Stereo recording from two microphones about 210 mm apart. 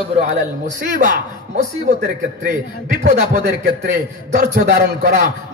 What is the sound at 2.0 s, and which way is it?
A man's voice, 45° right (ahead or behind).